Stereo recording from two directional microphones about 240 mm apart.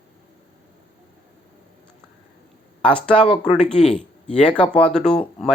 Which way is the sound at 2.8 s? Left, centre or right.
Centre.